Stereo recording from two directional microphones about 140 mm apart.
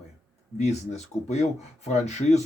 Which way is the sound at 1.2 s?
50° left (ahead or behind).